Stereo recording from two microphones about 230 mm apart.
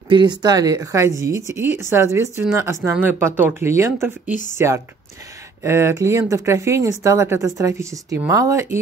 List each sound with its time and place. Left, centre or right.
0.1 s speech: centre